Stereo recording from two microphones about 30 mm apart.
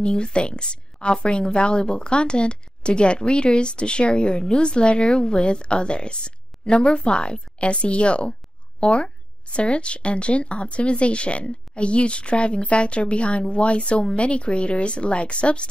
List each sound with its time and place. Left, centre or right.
0.0 s speech: left